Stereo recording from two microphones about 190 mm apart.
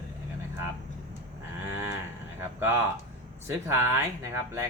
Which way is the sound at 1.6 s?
15° right (ahead or behind).